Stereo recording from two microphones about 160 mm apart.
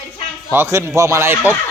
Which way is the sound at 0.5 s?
15° right (ahead or behind).